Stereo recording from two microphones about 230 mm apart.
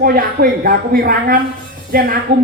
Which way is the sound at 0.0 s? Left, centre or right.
Right.